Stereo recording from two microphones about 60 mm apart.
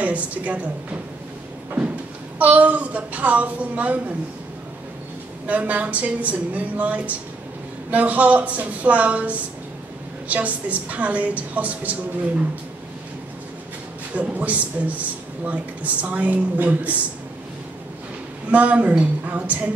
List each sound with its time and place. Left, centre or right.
0.0 s speech: right
2.3 s speech: right
5.5 s speech: right
14.1 s speech: right
18.5 s speech: right